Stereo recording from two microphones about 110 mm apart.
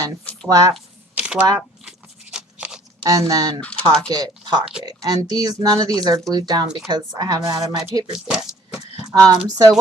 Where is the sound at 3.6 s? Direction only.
10° left (ahead or behind).